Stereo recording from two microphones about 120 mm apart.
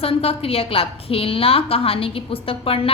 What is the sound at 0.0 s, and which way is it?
A woman's voice, 55° left (ahead or behind).